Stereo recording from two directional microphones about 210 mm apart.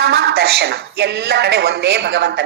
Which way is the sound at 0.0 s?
50° right (ahead or behind).